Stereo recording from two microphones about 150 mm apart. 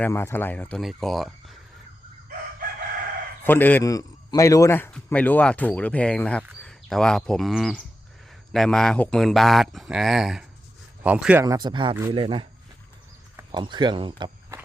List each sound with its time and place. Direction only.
0.0 s a man's voice: 15° left (ahead or behind); by 1.5 s centre (ahead or behind)
3.4 s a man's voice: 15° left (ahead or behind); by 11.4 s 10° right (ahead or behind)
11.4 s speech: 25° right (ahead or behind)
13.5 s speech: 30° right (ahead or behind)